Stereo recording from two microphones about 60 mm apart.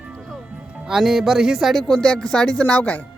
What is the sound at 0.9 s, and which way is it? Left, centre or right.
Speech, centre.